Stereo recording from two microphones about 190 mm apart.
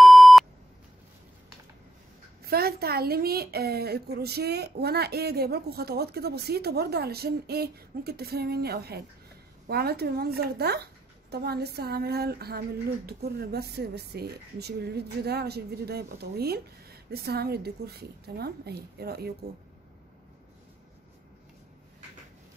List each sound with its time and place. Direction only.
0.0 s beep: centre (ahead or behind)
2.4 s speech: 55° right (ahead or behind)